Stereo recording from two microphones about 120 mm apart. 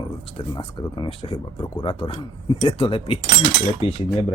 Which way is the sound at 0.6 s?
45° left (ahead or behind).